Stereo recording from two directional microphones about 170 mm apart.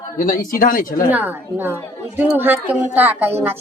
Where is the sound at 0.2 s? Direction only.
55° left (ahead or behind).